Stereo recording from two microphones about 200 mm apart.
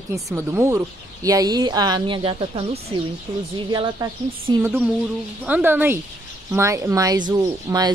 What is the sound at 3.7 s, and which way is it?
Speech, 20° right (ahead or behind).